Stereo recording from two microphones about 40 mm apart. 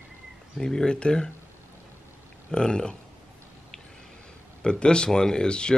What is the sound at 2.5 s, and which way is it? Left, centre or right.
Speech, left.